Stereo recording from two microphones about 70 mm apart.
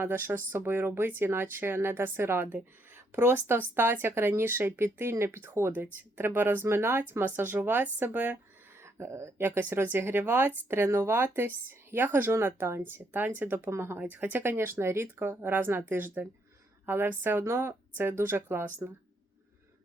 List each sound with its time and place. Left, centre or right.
0.0 s speech: right
8.8 s a sound: right
9.4 s speech: right
14.1 s speech: right